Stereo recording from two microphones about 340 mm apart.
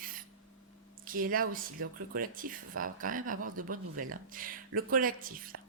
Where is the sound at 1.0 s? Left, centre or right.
Right.